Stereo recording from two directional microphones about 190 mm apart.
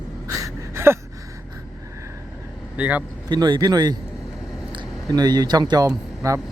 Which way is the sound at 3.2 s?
20° right (ahead or behind).